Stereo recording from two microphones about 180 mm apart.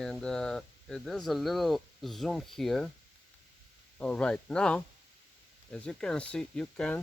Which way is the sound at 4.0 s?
5° left (ahead or behind).